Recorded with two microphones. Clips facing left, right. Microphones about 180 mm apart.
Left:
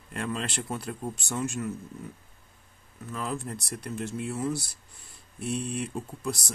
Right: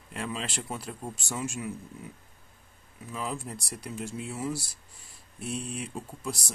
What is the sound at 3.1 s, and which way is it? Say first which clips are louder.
Speech: left 2 dB; 5° right (ahead or behind).